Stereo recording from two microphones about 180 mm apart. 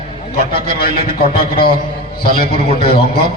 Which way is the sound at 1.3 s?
55° left (ahead or behind).